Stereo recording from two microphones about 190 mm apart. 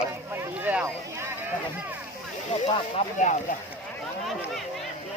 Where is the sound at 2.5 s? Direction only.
30° left (ahead or behind).